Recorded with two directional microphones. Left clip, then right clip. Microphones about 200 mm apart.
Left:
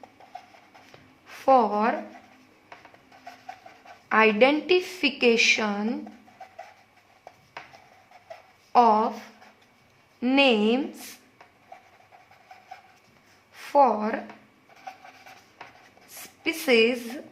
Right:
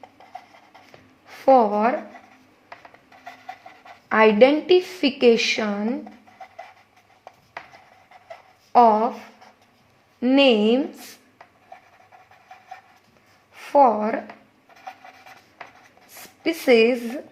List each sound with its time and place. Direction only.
1.3 s a woman's voice: 20° right (ahead or behind)
4.1 s a woman's voice: 25° right (ahead or behind)
8.7 s speech: 20° right (ahead or behind)
10.3 s a woman's voice: 25° right (ahead or behind)
13.5 s a sound: 20° right (ahead or behind)
16.0 s a woman's voice: 20° right (ahead or behind)